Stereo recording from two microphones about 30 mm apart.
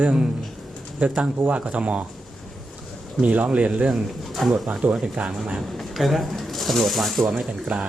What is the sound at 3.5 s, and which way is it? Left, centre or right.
Speech, right.